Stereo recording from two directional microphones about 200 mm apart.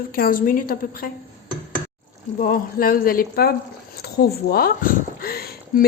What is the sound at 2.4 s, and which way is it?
A woman's voice, 45° left (ahead or behind).